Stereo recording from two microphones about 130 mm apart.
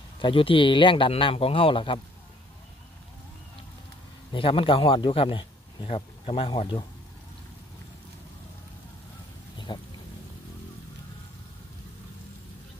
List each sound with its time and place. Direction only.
0.2 s speech: 40° left (ahead or behind)
4.3 s speech: 40° left (ahead or behind)
9.7 s speech: 35° left (ahead or behind)